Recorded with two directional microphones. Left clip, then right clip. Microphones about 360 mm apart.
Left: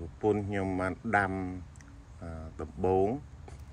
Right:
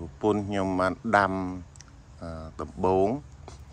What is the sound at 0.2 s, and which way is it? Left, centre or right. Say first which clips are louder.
Speech: right 4 dB; centre.